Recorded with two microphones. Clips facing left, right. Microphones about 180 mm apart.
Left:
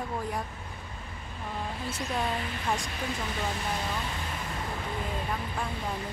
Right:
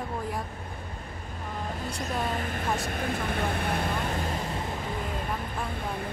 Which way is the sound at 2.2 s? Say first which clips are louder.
Right 1 dB; 50° right (ahead or behind).